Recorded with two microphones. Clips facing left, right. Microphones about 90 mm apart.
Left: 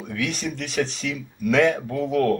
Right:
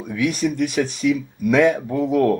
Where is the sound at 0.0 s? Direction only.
10° right (ahead or behind).